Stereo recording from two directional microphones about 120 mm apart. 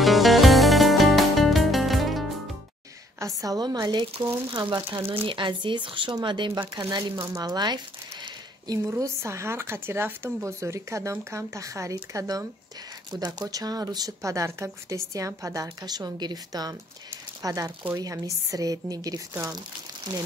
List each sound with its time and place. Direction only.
0.0 s music: centre (ahead or behind)
3.2 s speech: 30° right (ahead or behind)
7.3 s a sound: 35° right (ahead or behind)
8.7 s speech: 25° right (ahead or behind)